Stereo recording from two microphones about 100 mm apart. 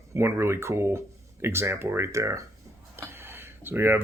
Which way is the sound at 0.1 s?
25° right (ahead or behind).